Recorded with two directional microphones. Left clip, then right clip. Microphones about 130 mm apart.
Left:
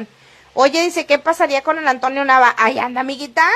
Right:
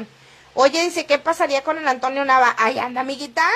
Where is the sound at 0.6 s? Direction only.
15° left (ahead or behind).